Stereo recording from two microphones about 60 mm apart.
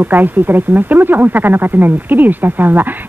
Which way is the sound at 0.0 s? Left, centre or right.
Right.